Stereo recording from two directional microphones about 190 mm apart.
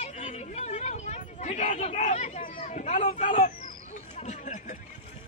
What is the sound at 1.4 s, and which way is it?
Hubbub, 40° left (ahead or behind).